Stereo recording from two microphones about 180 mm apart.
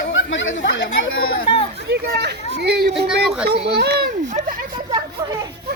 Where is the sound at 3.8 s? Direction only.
65° right (ahead or behind).